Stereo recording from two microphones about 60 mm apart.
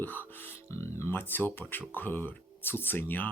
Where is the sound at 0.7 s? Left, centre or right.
Left.